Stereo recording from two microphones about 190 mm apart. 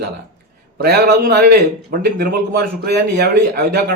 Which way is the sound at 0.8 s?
55° right (ahead or behind).